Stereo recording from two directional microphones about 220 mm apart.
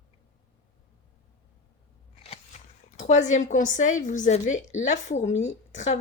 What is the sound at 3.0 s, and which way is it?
A woman's voice, 35° left (ahead or behind).